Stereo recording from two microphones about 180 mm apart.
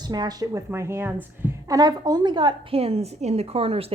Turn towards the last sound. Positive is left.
turn(degrees=-30)  # may be behind; listen again after turning